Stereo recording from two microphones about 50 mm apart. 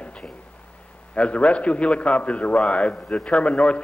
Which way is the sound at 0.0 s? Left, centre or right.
Left.